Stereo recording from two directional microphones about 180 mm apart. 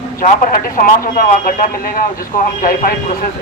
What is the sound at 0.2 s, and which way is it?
A man's voice, 50° left (ahead or behind).